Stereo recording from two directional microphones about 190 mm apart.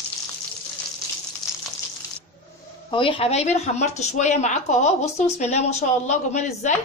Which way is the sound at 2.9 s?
30° left (ahead or behind).